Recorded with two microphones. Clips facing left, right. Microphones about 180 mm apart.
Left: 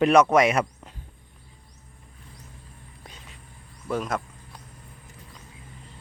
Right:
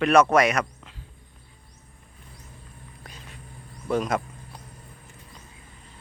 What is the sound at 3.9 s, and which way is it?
Speech, centre (ahead or behind).